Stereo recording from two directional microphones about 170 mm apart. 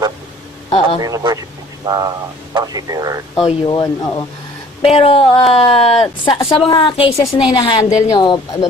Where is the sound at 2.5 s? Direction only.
20° right (ahead or behind).